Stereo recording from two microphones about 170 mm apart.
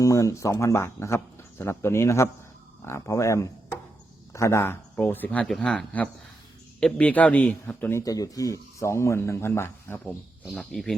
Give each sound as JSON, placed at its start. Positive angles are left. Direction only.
{"t": 0.0, "sound": "speech", "side_deg": 20}
{"t": 10.4, "sound": "speech", "side_deg": 0}